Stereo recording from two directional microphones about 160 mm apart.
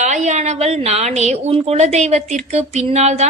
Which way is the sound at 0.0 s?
45° right (ahead or behind).